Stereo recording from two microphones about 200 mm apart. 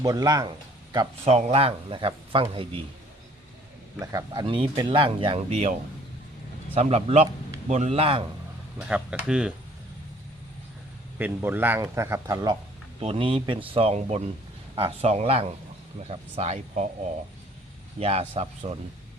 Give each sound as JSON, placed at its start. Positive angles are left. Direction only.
{"t": 0.0, "sound": "speech", "side_deg": -20}
{"t": 0.9, "sound": "speech", "side_deg": -30}
{"t": 4.0, "sound": "speech", "side_deg": -20}
{"t": 6.7, "sound": "speech", "side_deg": -30}
{"t": 8.9, "sound": "speech", "side_deg": -5}
{"t": 11.2, "sound": "speech", "side_deg": -10}
{"t": 13.0, "sound": "speech", "side_deg": -30}
{"t": 18.0, "sound": "speech", "side_deg": -30}